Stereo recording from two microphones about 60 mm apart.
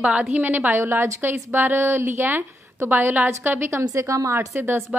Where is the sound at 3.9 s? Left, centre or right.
Right.